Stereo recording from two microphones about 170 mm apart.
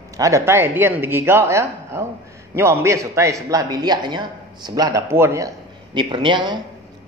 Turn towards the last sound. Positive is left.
turn(degrees=-30)  # may be behind; listen again after turning